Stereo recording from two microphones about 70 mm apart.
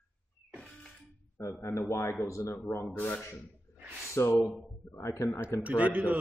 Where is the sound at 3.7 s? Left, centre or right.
Left.